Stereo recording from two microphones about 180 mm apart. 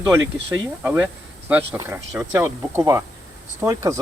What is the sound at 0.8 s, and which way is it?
Speech, 5° right (ahead or behind).